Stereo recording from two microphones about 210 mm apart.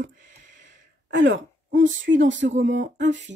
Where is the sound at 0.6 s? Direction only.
60° right (ahead or behind).